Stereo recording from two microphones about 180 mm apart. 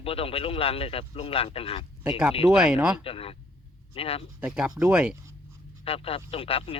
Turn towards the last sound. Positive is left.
turn(degrees=30)  # may be behind; listen again after turning